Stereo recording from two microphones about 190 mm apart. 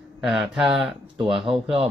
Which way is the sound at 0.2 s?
Centre (ahead or behind).